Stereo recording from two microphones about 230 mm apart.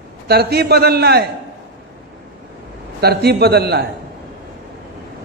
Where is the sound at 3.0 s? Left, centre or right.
Right.